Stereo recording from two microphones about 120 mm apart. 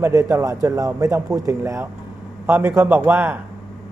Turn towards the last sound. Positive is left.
turn(degrees=-15)  # may be behind; listen again after turning